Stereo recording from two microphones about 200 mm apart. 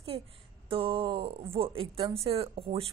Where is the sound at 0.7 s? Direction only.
25° right (ahead or behind).